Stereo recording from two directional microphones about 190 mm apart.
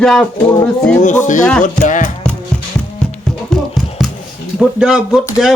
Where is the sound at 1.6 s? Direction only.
45° left (ahead or behind).